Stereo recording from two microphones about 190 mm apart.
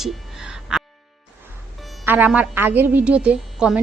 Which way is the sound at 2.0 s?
10° right (ahead or behind).